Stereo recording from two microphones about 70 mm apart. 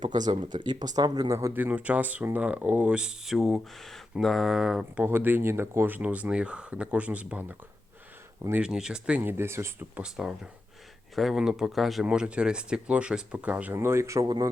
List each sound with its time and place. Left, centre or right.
0.1 s speech: right
1.3 s speech: right
1.5 s speech: right; by 4.9 s centre
5.0 s speech: right
8.6 s speech: centre
9.2 s speech: right
9.9 s speech: centre
12.0 s speech: centre
13.7 s speech: right
14.3 s speech: right